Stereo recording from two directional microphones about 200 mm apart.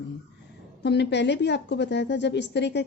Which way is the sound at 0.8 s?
60° left (ahead or behind).